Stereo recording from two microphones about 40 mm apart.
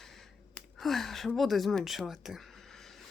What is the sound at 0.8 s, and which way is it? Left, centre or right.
Speech, centre.